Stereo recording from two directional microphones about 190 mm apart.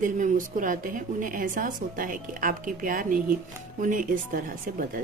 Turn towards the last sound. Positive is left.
turn(degrees=-45)  # may be behind; listen again after turning